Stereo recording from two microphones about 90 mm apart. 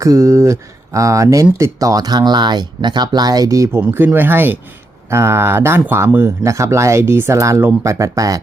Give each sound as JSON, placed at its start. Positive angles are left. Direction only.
{"t": 0.0, "sound": "speech", "side_deg": -35}
{"t": 3.8, "sound": "speech", "side_deg": -25}